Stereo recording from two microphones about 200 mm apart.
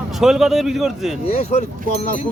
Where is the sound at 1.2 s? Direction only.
30° left (ahead or behind).